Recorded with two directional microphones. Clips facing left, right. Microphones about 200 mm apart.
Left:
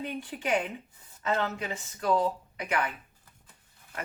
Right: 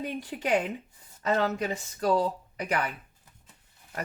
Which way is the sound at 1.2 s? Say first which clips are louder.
Right 3 dB; 40° right (ahead or behind).